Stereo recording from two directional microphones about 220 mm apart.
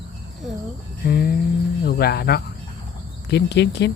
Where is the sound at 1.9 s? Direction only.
45° left (ahead or behind).